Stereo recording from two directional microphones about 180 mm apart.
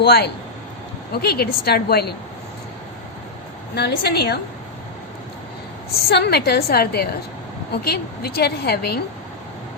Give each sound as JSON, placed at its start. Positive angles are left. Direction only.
{"t": 0.0, "sound": "a woman's voice", "side_deg": 65}
{"t": 3.8, "sound": "a woman's voice", "side_deg": 65}
{"t": 6.1, "sound": "a woman's voice", "side_deg": 65}